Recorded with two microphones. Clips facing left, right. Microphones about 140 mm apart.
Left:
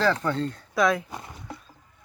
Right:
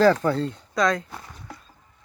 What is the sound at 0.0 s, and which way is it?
Speech, 35° right (ahead or behind).